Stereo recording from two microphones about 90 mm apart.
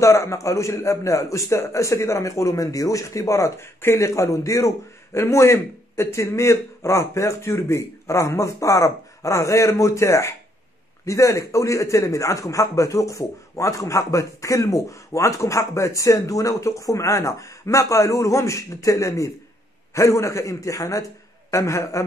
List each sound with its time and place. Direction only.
0.0 s a man's voice: 35° left (ahead or behind)